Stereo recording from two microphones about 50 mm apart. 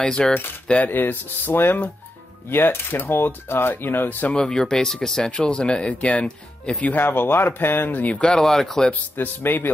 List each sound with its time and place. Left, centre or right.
0.0 s speech: centre
0.8 s speech: left
4.3 s speech: centre
7.0 s speech: left
8.1 s speech: left
8.4 s speech: centre
9.1 s speech: left